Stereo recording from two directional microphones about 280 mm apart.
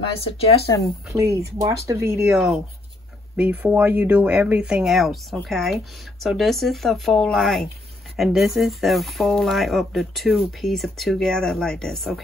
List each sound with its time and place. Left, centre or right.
1.0 s speech: centre